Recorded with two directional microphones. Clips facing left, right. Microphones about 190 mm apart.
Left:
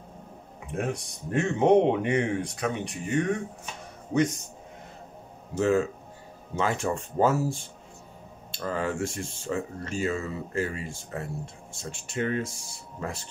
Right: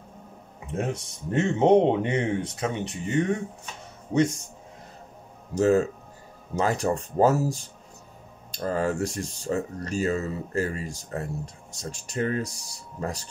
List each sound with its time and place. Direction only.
0.7 s speech: 25° right (ahead or behind)
5.5 s speech: 40° right (ahead or behind)